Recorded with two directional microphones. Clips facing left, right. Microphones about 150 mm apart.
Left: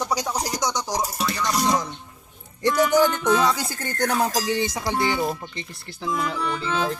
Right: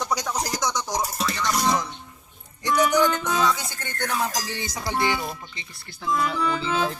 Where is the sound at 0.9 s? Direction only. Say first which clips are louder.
Left 1 dB; 10° left (ahead or behind).